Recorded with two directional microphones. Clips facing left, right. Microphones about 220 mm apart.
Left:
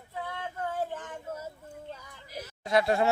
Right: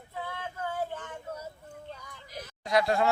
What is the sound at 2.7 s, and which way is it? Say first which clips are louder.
Speech: left 1 dB; 25° left (ahead or behind).